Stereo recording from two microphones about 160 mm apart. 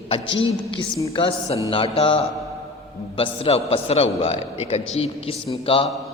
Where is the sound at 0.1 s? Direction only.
35° left (ahead or behind).